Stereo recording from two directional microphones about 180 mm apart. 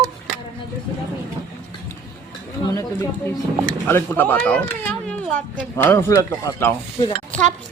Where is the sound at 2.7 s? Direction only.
15° left (ahead or behind).